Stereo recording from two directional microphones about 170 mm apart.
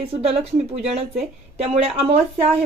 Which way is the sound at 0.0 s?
35° right (ahead or behind).